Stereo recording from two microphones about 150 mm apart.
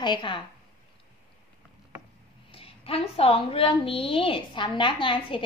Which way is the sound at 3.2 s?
40° left (ahead or behind).